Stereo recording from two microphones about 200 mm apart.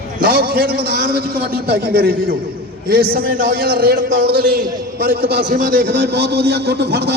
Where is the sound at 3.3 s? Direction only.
60° right (ahead or behind).